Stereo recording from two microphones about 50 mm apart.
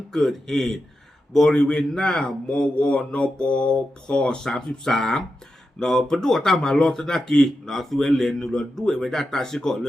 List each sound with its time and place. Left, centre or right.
0.1 s a man's voice: centre
4.4 s a man's voice: centre